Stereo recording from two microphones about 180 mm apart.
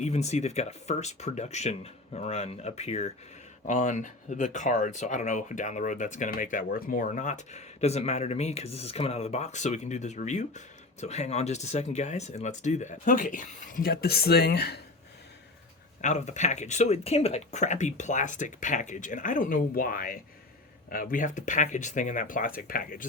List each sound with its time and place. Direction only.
0.0 s speech: 40° left (ahead or behind); by 14.8 s 60° left (ahead or behind)
16.0 s speech: 40° left (ahead or behind)